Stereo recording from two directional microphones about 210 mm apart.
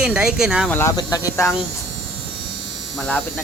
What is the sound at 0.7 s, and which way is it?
Speech, 15° left (ahead or behind).